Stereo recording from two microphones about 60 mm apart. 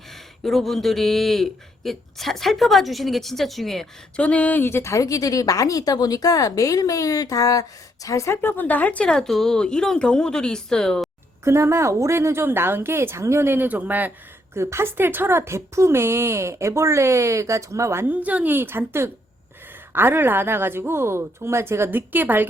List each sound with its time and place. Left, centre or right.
0.1 s speech: centre
4.2 s speech: left
4.6 s speech: left
8.0 s speech: left
8.4 s speech: left
9.0 s a woman's voice: centre
11.4 s speech: right
14.5 s speech: right
18.1 s speech: right
18.5 s a woman's voice: right